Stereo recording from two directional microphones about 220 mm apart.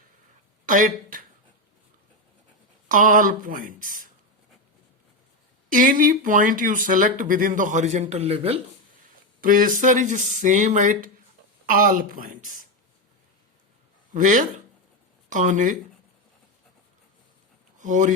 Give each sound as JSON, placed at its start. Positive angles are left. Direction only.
{"t": 0.6, "sound": "speech", "side_deg": -40}
{"t": 2.9, "sound": "speech", "side_deg": -35}
{"t": 5.6, "sound": "speech", "side_deg": -40}
{"t": 9.0, "sound": "speech", "side_deg": -40}
{"t": 14.1, "sound": "speech", "side_deg": -35}
{"t": 17.7, "sound": "speech", "side_deg": -35}